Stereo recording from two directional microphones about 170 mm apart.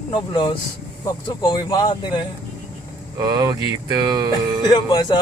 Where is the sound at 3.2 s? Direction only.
25° right (ahead or behind).